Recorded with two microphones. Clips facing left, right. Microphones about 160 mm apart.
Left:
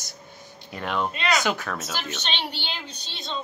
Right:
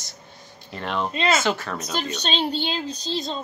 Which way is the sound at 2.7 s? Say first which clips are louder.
Right 12 dB; 40° right (ahead or behind).